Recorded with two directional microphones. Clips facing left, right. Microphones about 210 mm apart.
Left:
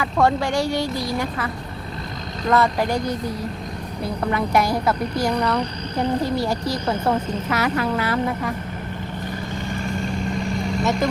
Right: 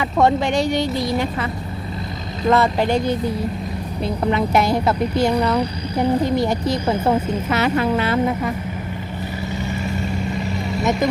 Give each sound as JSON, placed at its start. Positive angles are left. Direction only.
{"t": 0.0, "sound": "speech", "side_deg": -20}
{"t": 2.5, "sound": "speech", "side_deg": -25}
{"t": 5.3, "sound": "speech", "side_deg": -10}
{"t": 6.3, "sound": "speech", "side_deg": -20}
{"t": 6.8, "sound": "speech", "side_deg": -10}
{"t": 7.5, "sound": "speech", "side_deg": -25}
{"t": 9.6, "sound": "vehicle", "side_deg": -5}